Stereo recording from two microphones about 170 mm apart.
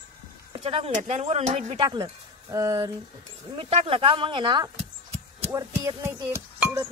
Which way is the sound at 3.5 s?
35° right (ahead or behind).